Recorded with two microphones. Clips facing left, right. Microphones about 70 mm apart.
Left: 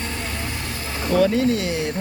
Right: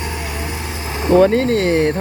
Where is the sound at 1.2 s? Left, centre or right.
Right.